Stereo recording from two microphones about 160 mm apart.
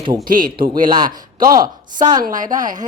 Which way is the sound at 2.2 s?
55° right (ahead or behind).